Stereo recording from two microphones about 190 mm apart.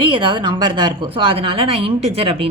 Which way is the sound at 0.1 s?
25° right (ahead or behind).